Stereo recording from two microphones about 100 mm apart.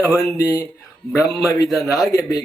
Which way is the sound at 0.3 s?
35° left (ahead or behind).